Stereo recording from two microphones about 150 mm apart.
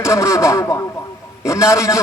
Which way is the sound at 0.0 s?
20° left (ahead or behind).